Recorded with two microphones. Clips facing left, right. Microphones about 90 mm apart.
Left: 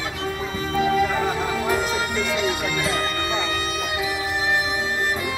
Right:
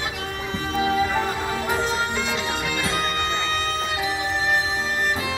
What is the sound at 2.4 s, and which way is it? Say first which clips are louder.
Music: left 2 dB; 20° right (ahead or behind).